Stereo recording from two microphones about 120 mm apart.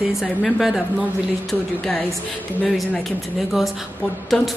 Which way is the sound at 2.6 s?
10° left (ahead or behind).